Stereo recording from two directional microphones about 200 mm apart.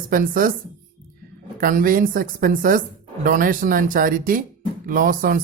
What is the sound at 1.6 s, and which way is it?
A woman's voice, 45° right (ahead or behind).